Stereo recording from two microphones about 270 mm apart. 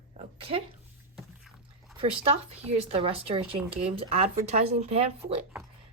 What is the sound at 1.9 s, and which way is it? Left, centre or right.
Speech, right.